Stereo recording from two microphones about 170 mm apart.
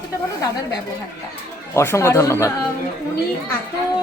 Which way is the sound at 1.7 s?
15° left (ahead or behind).